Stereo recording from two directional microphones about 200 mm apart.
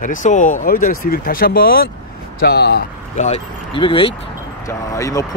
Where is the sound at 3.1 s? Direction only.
35° left (ahead or behind).